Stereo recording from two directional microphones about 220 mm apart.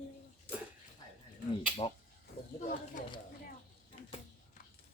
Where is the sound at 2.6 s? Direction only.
35° left (ahead or behind).